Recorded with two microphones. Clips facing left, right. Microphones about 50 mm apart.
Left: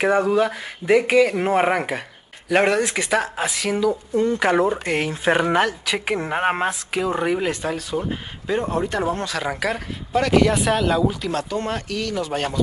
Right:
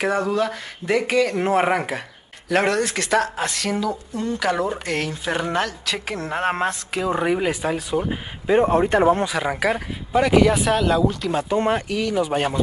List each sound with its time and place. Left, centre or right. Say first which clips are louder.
0.0 s speech: left 3 dB; centre
3.9 s speech: left 6 dB; left
4.6 s speech: left 3 dB; centre
8.5 s speech: right 6 dB; right
9.2 s speech: right 3 dB; centre
11.3 s speech: right 4 dB; right